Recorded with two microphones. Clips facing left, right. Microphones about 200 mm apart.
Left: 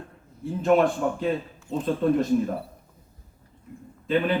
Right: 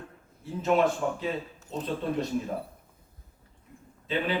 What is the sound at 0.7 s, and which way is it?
Speech, 55° left (ahead or behind).